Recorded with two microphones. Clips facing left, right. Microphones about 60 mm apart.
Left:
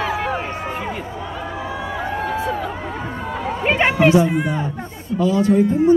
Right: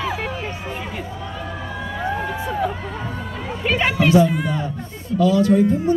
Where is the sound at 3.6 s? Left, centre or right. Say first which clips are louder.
Left 3 dB; left.